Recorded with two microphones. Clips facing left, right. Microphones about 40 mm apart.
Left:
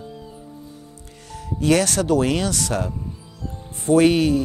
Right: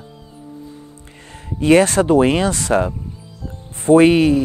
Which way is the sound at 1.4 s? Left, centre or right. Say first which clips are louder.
Right 6 dB; right.